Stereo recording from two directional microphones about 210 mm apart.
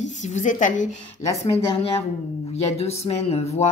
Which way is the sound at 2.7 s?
30° left (ahead or behind).